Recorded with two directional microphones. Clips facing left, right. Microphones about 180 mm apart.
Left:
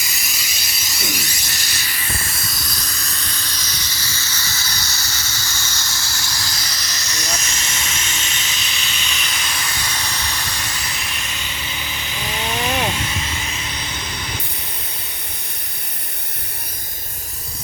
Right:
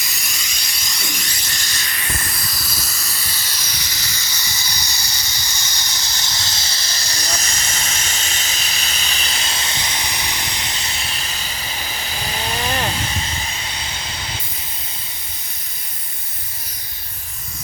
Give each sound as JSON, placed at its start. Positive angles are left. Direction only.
{"t": 0.0, "sound": "electric toothbrush", "side_deg": 0}
{"t": 12.9, "sound": "vehicle", "side_deg": -35}